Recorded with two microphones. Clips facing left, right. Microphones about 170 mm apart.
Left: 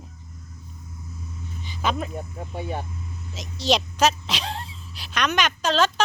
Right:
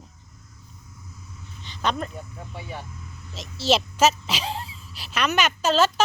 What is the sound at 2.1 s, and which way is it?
Speech, 50° left (ahead or behind).